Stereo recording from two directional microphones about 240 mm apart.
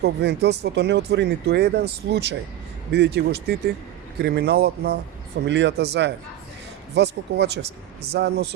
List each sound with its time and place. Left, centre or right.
0.0 s speech: right